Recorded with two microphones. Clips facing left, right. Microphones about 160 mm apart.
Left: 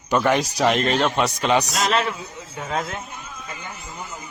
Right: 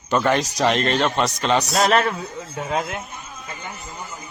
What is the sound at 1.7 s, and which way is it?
Speech, 45° right (ahead or behind).